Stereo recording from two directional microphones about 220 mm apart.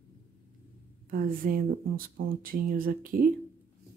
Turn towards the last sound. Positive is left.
turn(degrees=-40)  # may be behind; listen again after turning